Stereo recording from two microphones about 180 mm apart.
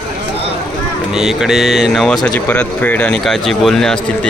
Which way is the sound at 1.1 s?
Centre (ahead or behind).